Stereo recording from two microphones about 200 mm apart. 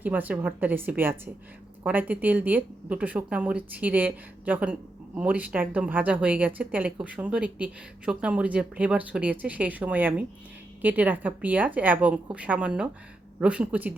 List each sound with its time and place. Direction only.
0.0 s speech: 10° right (ahead or behind)